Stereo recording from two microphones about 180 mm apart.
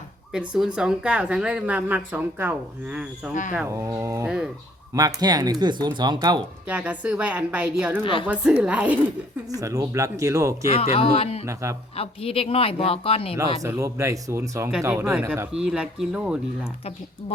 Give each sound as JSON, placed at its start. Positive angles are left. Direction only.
{"t": 0.3, "sound": "a woman's voice", "side_deg": -5}
{"t": 6.7, "sound": "a woman's voice", "side_deg": -10}
{"t": 8.0, "sound": "speech", "side_deg": 25}
{"t": 8.3, "sound": "a woman's voice", "side_deg": -5}
{"t": 9.5, "sound": "a woman's voice", "side_deg": -20}
{"t": 10.7, "sound": "speech", "side_deg": 35}
{"t": 11.4, "sound": "a woman's voice", "side_deg": -15}
{"t": 11.9, "sound": "speech", "side_deg": 30}
{"t": 13.6, "sound": "a woman's voice", "side_deg": -20}